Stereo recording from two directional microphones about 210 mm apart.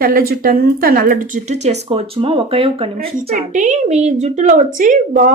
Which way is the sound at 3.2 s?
35° right (ahead or behind).